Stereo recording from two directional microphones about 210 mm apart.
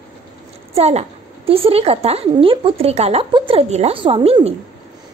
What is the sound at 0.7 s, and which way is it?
A woman's voice, 30° right (ahead or behind).